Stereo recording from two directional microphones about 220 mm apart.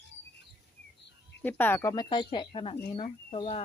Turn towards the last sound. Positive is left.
turn(degrees=25)  # may be behind; listen again after turning